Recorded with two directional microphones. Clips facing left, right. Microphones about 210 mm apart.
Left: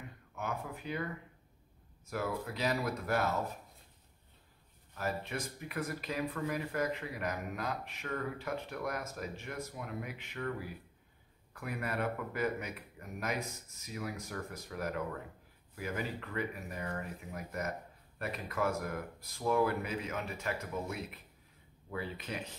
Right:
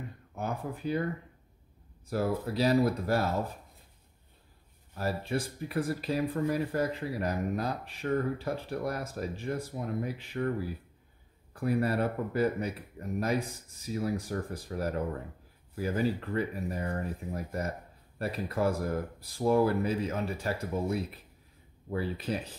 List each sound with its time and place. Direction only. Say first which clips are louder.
0.3 s speech: right 4 dB; 35° right (ahead or behind)
2.0 s speech: right 6 dB; 35° right (ahead or behind)
4.9 s speech: right 6 dB; 30° right (ahead or behind)
11.5 s speech: right 9 dB; 35° right (ahead or behind)